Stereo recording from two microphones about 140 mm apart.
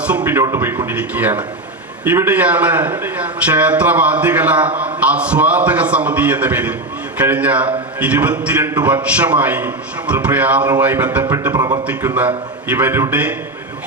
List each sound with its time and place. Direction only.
0.0 s a man's voice: 10° right (ahead or behind)
11.5 s a man's voice: 30° right (ahead or behind)
11.9 s a man's voice: 10° right (ahead or behind)